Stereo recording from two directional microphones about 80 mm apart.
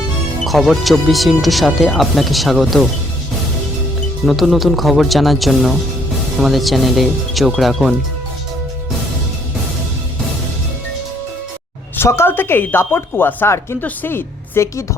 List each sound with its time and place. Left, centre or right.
0.4 s speech: centre
4.3 s speech: centre
12.0 s speech: left